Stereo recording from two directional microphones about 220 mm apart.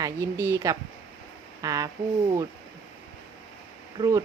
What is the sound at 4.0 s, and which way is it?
Speech, 15° right (ahead or behind).